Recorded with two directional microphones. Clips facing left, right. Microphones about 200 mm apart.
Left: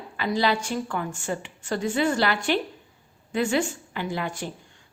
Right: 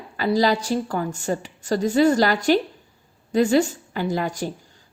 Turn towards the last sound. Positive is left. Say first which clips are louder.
# right 5 dB
turn(degrees=-40)  # may be behind; listen again after turning